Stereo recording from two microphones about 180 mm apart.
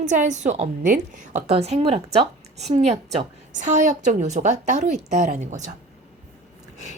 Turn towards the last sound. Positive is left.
turn(degrees=-40)  # may be behind; listen again after turning